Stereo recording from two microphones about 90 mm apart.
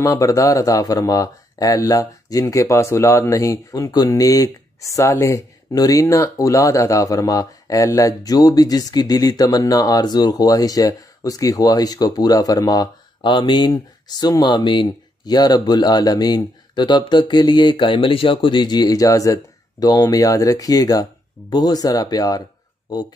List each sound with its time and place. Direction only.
0.0 s speech: 40° left (ahead or behind)
13.2 s speech: 60° left (ahead or behind)